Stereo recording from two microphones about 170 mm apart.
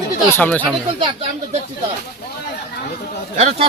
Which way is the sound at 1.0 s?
30° right (ahead or behind).